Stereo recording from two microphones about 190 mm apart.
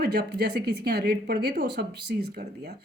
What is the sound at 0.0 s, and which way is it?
Speech, 55° right (ahead or behind).